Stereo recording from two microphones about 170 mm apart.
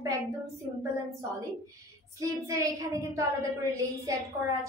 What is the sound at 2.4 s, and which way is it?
Speech, 20° right (ahead or behind).